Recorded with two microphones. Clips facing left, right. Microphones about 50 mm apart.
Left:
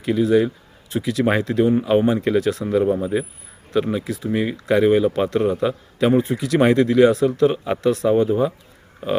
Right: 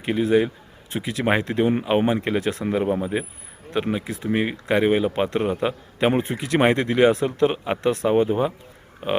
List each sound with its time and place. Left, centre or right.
0.0 s speech: right